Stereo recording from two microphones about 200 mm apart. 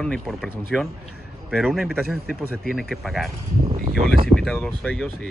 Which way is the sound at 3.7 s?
45° right (ahead or behind).